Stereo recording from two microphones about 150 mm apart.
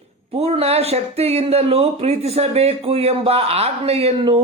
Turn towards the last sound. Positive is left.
turn(degrees=-40)  # may be behind; listen again after turning